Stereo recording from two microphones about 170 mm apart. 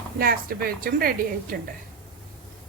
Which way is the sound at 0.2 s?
65° right (ahead or behind).